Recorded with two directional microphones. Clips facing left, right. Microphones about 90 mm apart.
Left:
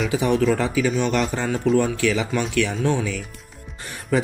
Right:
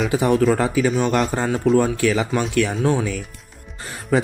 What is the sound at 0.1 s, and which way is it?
A man's voice, 40° right (ahead or behind).